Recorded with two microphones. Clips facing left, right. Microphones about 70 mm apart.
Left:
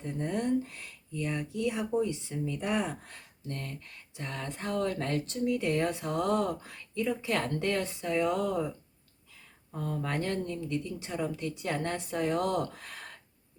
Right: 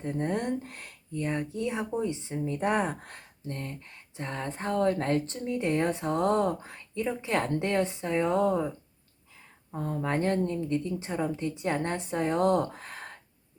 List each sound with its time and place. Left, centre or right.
0.0 s speech: right
3.4 s speech: right